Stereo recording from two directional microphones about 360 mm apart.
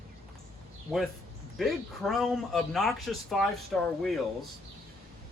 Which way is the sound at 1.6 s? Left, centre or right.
Centre.